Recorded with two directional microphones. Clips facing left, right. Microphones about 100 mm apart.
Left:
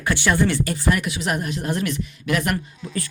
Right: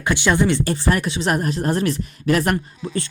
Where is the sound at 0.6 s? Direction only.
30° right (ahead or behind).